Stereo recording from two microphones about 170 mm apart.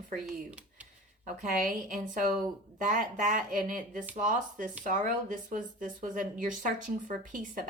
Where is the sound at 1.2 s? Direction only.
50° right (ahead or behind).